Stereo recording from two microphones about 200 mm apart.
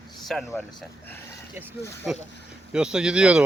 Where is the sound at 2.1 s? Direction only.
Centre (ahead or behind).